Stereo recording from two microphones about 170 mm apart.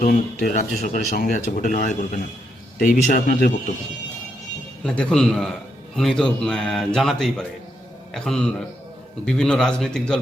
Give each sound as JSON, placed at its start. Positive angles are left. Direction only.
{"t": 0.0, "sound": "a man's voice", "side_deg": 50}
{"t": 4.8, "sound": "speech", "side_deg": 5}